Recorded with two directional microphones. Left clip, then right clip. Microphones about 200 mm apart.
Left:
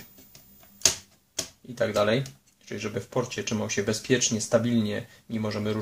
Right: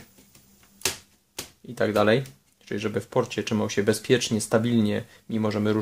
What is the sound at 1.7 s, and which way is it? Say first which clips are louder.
Speech: right 3 dB; 40° right (ahead or behind).